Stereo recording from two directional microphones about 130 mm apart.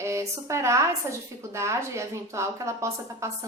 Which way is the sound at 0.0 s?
20° right (ahead or behind).